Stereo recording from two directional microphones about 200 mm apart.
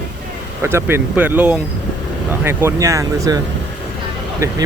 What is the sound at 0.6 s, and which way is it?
Speech, 10° right (ahead or behind).